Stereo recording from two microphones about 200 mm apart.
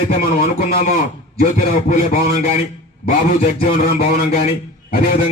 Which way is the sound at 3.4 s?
50° left (ahead or behind).